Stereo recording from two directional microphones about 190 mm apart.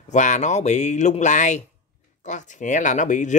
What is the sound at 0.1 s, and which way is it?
Speech, 40° left (ahead or behind).